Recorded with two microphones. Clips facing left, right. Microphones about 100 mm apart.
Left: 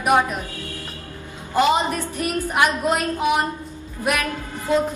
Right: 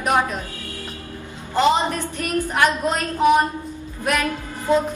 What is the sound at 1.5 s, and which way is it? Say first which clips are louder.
A woman's voice: even; 15° left (ahead or behind).